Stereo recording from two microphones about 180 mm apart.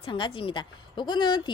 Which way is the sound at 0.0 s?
30° left (ahead or behind).